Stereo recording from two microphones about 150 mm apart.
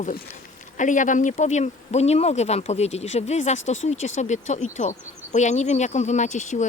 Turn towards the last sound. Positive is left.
turn(degrees=55)  # may be behind; listen again after turning